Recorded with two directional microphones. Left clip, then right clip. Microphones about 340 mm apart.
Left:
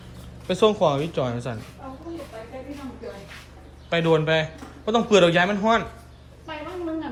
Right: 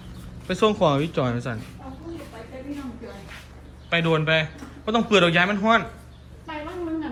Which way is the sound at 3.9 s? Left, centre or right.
Centre.